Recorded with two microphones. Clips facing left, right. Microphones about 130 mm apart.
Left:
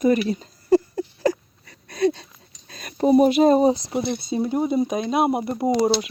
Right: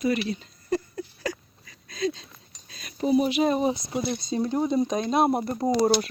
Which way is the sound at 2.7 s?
50° left (ahead or behind).